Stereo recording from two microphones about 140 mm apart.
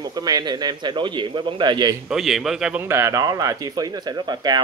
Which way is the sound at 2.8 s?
20° right (ahead or behind).